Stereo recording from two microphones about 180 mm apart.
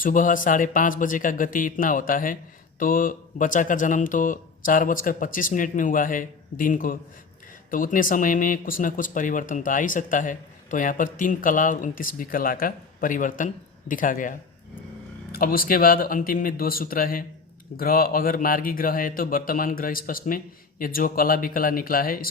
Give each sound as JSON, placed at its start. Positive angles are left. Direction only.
{"t": 0.0, "sound": "speech", "side_deg": 50}
{"t": 15.4, "sound": "speech", "side_deg": 55}